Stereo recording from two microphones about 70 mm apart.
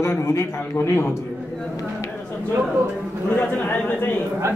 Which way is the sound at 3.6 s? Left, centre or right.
Left.